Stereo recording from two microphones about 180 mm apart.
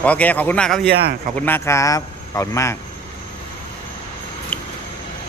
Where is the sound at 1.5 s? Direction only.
15° left (ahead or behind).